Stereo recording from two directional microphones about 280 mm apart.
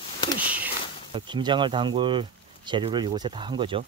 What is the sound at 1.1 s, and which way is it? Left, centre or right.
Speech, centre.